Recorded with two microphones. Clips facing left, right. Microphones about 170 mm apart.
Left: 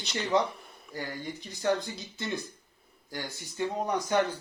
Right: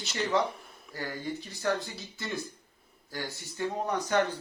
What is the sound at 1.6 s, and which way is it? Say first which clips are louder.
Speech: left 3 dB; 20° left (ahead or behind).